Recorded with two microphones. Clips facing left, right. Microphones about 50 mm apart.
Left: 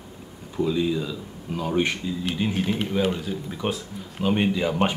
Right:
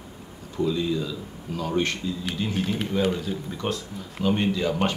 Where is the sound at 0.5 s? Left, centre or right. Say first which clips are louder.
Left 1 dB; centre.